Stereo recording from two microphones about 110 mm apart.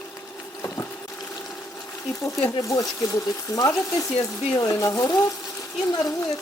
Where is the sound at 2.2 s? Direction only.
30° left (ahead or behind).